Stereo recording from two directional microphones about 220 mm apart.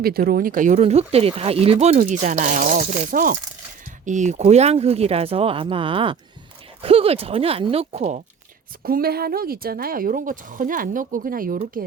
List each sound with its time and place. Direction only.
0.0 s speech: 45° right (ahead or behind); by 8.0 s 25° right (ahead or behind)
8.8 s speech: 40° right (ahead or behind)